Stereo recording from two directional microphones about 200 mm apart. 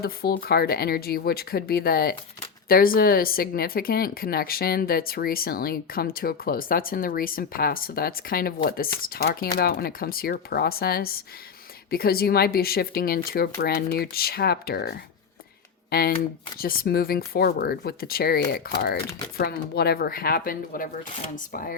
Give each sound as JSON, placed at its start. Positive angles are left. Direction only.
{"t": 0.0, "sound": "speech", "side_deg": 50}